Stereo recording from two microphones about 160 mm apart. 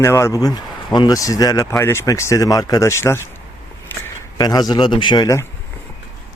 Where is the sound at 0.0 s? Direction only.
15° left (ahead or behind).